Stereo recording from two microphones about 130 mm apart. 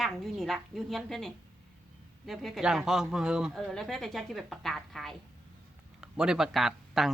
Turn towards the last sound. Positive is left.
turn(degrees=0)  # may be behind; listen again after turning